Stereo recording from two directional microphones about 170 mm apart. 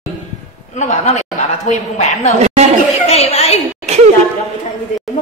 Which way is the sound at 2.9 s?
40° left (ahead or behind).